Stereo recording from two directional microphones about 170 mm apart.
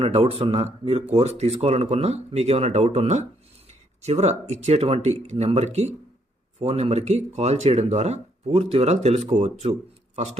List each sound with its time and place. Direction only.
0.0 s speech: 35° right (ahead or behind)